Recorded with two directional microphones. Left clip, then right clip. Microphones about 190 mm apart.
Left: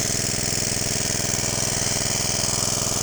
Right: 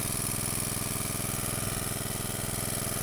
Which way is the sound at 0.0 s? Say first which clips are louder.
Left 10 dB; 5° left (ahead or behind).